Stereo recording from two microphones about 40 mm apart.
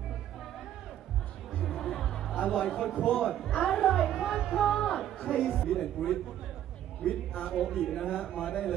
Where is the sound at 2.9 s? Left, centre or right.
Left.